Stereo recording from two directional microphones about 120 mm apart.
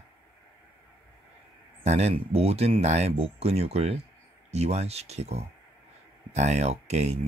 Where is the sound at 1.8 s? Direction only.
65° right (ahead or behind).